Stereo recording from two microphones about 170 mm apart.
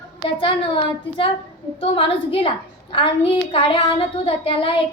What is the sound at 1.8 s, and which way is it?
Speech, 30° left (ahead or behind).